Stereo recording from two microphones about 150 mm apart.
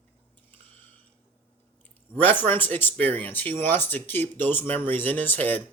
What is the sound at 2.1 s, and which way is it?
Speech, 10° left (ahead or behind).